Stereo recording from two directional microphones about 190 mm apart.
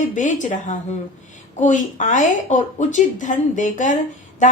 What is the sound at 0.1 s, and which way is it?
A woman's voice, 40° left (ahead or behind).